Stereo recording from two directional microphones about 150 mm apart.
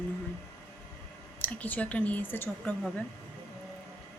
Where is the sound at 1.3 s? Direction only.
10° left (ahead or behind).